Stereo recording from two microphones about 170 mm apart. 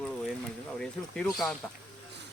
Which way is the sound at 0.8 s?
5° left (ahead or behind).